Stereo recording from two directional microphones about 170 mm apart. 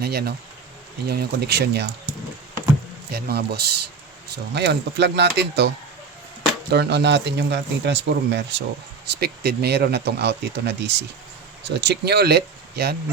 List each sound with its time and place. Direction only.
0.0 s speech: 70° right (ahead or behind)
3.1 s speech: 70° right (ahead or behind); by 8.6 s 90° right
9.0 s speech: 70° right (ahead or behind)